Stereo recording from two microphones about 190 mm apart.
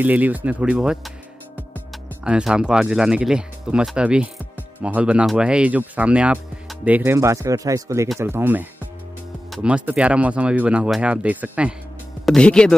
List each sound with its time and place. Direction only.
0.0 s speech: 10° right (ahead or behind)
2.2 s speech: 5° right (ahead or behind)
12.3 s speech: 5° left (ahead or behind)